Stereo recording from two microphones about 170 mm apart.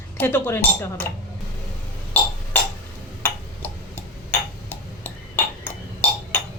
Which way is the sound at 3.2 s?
10° left (ahead or behind).